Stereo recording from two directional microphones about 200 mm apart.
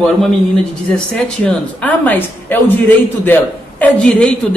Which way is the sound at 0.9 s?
5° left (ahead or behind).